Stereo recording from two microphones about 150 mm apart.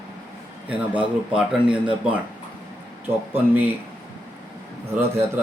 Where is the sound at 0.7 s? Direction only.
10° right (ahead or behind).